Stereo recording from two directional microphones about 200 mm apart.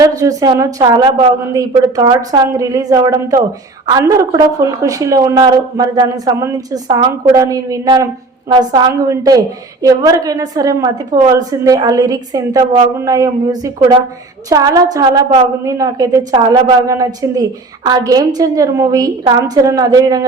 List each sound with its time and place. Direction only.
0.0 s a woman's voice: 15° right (ahead or behind)